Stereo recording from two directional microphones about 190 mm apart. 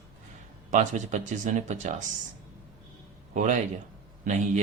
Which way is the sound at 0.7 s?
40° right (ahead or behind).